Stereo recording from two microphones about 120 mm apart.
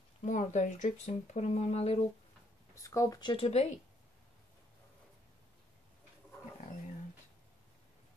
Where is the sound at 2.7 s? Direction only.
25° left (ahead or behind).